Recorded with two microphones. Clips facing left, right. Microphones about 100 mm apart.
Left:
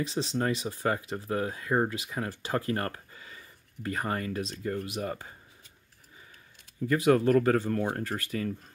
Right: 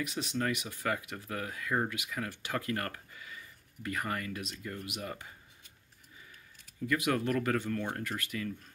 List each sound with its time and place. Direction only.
0.0 s speech: 30° left (ahead or behind)
6.9 s speech: 30° left (ahead or behind)